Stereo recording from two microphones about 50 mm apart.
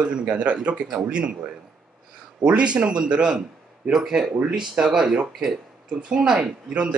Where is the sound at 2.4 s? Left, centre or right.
Right.